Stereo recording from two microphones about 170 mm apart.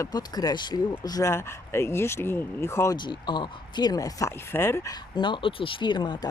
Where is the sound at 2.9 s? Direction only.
25° left (ahead or behind).